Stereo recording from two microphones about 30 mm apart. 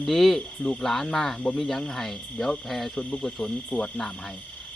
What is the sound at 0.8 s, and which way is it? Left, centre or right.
Speech, centre.